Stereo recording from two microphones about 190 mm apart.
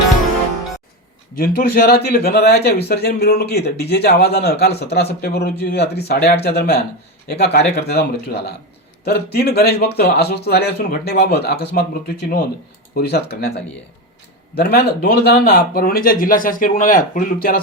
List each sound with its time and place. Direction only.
1.4 s speech: 55° left (ahead or behind)